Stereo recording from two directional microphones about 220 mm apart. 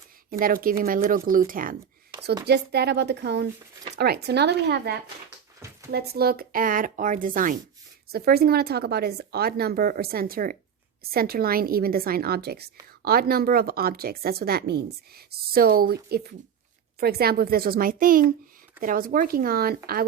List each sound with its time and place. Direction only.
0.3 s speech: 40° right (ahead or behind)
17.0 s speech: 45° right (ahead or behind)